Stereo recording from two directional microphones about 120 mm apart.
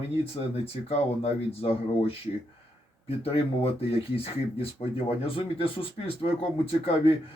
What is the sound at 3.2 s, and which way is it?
Speech, 50° left (ahead or behind).